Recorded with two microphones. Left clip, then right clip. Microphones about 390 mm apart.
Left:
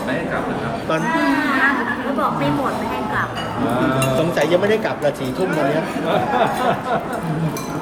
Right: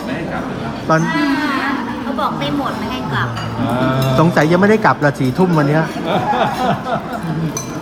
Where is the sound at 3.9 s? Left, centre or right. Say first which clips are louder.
Right 3 dB; centre.